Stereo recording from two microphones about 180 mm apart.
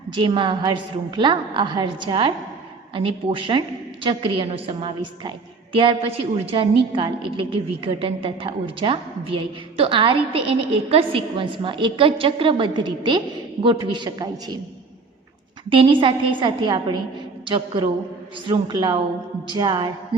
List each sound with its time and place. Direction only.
0.1 s a woman's voice: 25° right (ahead or behind)
15.7 s a woman's voice: 30° right (ahead or behind)